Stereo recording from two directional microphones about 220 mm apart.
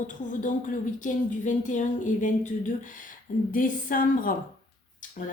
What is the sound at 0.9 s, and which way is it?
Speech, 35° left (ahead or behind).